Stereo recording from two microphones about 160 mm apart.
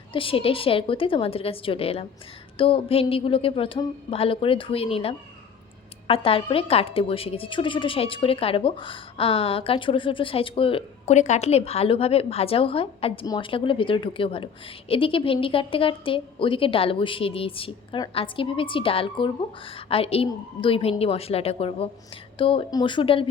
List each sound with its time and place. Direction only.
0.1 s a woman's voice: 35° left (ahead or behind)